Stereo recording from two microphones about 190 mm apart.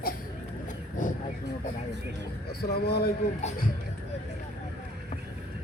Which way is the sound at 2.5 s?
55° left (ahead or behind).